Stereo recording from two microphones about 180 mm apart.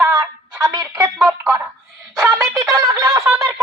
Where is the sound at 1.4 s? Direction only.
15° right (ahead or behind).